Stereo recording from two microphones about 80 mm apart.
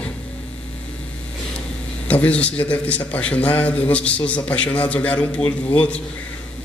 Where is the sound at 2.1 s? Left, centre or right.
Centre.